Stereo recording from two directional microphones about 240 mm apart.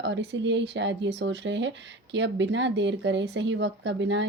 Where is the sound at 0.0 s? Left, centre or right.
Right.